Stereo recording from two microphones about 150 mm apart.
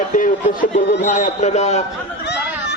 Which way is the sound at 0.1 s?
60° left (ahead or behind).